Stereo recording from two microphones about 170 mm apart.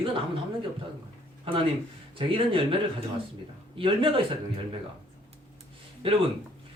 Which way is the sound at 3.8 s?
30° right (ahead or behind).